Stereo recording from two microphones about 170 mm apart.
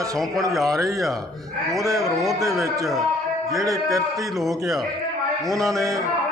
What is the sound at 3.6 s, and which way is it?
Speech, 20° right (ahead or behind).